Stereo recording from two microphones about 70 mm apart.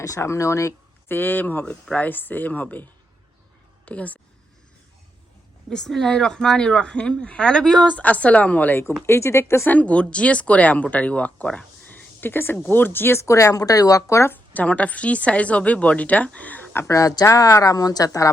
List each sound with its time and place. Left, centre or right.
0.0 s speech: left
1.0 s a woman's voice: left
3.8 s a woman's voice: centre
5.6 s speech: centre
7.9 s a woman's voice: left
9.0 s speech: left
9.6 s a woman's voice: left
14.3 s a woman's voice: left
16.8 s speech: left